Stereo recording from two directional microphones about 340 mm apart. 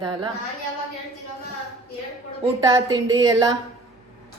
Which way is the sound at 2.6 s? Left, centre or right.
Centre.